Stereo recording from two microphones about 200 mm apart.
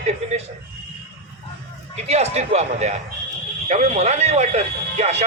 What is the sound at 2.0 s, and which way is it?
A man's voice, 35° right (ahead or behind).